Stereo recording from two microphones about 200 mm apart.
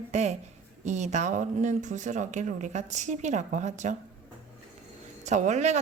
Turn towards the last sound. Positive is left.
turn(degrees=-35)  # may be behind; listen again after turning